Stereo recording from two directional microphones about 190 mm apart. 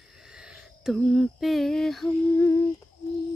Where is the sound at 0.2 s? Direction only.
5° right (ahead or behind); by 2.6 s 10° left (ahead or behind).